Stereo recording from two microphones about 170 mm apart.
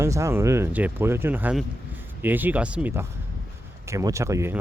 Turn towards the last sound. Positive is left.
turn(degrees=-15)  # may be behind; listen again after turning